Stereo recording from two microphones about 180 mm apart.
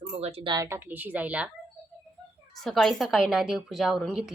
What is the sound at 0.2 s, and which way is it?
Speech, 35° right (ahead or behind).